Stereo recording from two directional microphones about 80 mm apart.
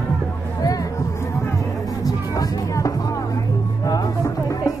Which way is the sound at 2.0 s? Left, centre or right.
Left.